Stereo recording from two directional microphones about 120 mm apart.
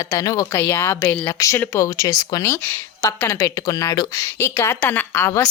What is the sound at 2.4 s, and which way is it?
A woman's voice, 20° left (ahead or behind).